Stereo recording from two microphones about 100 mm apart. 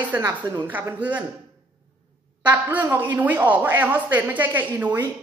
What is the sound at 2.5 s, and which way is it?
A woman's voice, 15° right (ahead or behind).